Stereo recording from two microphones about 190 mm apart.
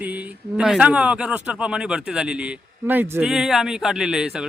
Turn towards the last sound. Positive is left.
turn(degrees=-5)  # may be behind; listen again after turning